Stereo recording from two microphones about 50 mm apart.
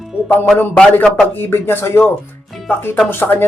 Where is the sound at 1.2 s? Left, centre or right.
Left.